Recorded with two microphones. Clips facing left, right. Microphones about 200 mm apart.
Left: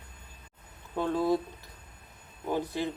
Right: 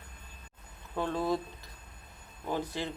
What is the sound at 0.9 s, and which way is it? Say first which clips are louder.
Speech: left 4 dB; 15° left (ahead or behind).